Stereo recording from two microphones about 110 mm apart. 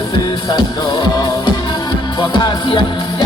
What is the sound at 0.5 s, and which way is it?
Music, 45° left (ahead or behind).